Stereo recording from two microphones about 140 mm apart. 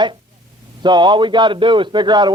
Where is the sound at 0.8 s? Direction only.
30° right (ahead or behind).